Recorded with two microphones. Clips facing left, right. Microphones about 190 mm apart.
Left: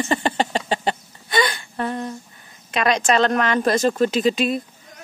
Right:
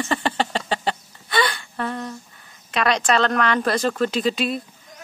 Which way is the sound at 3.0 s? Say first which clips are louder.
Left 2 dB; 15° left (ahead or behind).